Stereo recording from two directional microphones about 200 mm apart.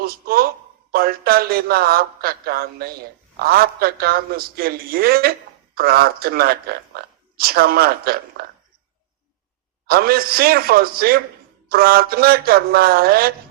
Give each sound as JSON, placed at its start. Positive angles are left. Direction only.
{"t": 0.0, "sound": "a man's voice", "side_deg": -50}
{"t": 9.8, "sound": "a man's voice", "side_deg": -50}